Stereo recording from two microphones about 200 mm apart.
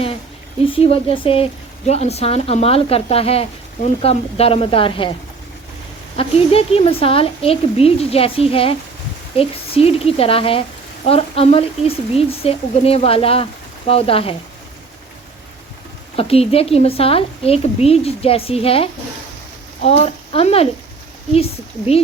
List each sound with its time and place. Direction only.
0.6 s a woman's voice: 30° left (ahead or behind)
6.1 s speech: 30° left (ahead or behind)
16.1 s speech: 30° left (ahead or behind)